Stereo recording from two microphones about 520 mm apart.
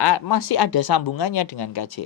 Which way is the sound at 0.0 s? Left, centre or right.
Left.